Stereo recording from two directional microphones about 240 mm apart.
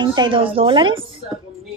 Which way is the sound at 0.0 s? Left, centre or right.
Centre.